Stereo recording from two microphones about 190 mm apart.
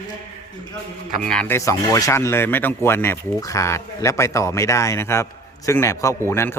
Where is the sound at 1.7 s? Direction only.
15° left (ahead or behind).